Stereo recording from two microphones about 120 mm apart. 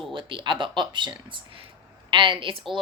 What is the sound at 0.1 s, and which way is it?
A woman's voice, 45° right (ahead or behind).